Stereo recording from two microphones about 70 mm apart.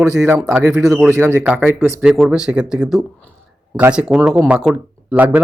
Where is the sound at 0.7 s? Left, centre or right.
Centre.